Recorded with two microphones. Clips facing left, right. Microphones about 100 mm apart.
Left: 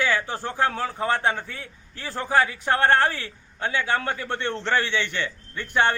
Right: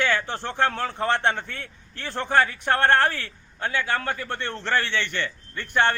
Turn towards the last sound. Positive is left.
turn(degrees=15)  # may be behind; listen again after turning